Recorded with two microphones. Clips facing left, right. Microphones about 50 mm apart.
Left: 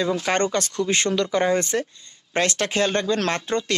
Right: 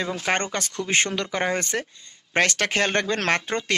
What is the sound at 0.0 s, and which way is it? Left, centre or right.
Speech, right.